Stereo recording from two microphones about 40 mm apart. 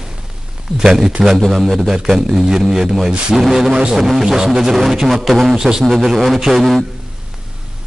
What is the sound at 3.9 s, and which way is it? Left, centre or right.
Didgeridoo, centre.